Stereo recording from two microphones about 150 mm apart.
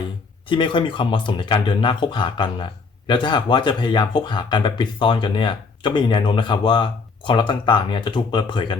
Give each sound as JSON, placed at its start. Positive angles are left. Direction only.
{"t": 0.4, "sound": "speech", "side_deg": 35}